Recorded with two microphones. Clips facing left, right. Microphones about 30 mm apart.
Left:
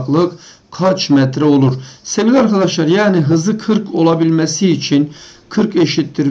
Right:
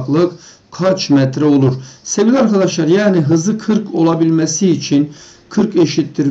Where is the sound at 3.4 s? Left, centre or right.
Left.